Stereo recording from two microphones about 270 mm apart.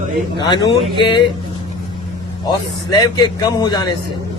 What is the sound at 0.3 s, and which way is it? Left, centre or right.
Speech, centre.